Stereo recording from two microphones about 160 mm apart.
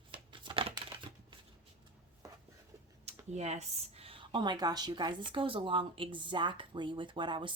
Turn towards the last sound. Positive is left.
turn(degrees=-30)  # may be behind; listen again after turning